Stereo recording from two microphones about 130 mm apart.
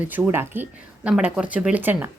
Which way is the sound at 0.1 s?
15° right (ahead or behind).